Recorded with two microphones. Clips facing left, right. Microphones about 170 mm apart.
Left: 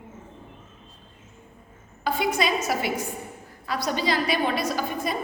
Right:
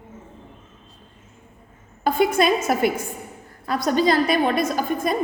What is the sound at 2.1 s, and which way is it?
A woman's voice, 50° right (ahead or behind).